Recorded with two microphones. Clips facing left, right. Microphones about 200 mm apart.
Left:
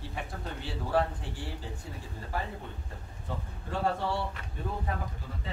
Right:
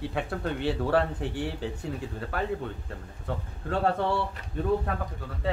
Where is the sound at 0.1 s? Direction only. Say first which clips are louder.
Right 8 dB; 70° right (ahead or behind).